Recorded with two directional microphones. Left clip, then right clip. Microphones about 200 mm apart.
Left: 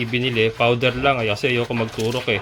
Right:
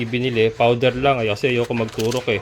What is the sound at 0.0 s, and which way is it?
Speech, 15° right (ahead or behind).